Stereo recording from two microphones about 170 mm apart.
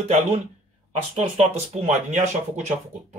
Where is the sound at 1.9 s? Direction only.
45° right (ahead or behind).